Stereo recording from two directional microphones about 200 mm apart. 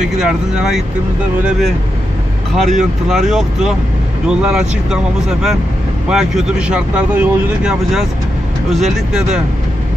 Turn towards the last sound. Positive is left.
turn(degrees=-5)  # may be behind; listen again after turning